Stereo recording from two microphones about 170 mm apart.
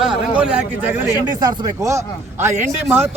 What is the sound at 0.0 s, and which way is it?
A man's voice, 5° right (ahead or behind).